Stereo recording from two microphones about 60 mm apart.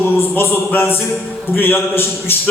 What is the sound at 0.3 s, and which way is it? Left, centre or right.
A man's voice, left.